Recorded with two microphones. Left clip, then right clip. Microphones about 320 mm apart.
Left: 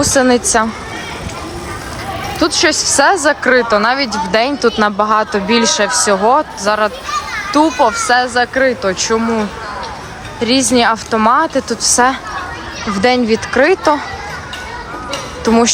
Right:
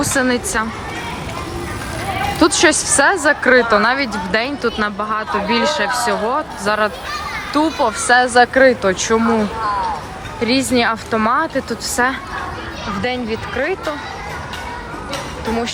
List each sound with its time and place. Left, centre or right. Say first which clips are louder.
0.0 s speech: left 6 dB; centre
2.4 s speech: left 1 dB; centre
10.4 s speech: left 4 dB; centre